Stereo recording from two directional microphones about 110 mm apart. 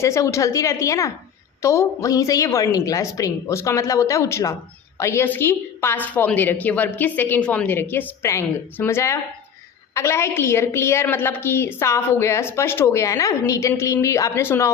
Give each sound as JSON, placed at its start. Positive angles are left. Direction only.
{"t": 0.0, "sound": "a woman's voice", "side_deg": 25}